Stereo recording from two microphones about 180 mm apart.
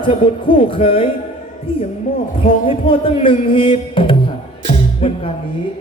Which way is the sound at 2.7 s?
30° left (ahead or behind).